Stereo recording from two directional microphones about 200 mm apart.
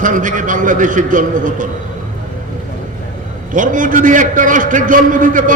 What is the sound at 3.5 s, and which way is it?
A man's voice, 40° right (ahead or behind).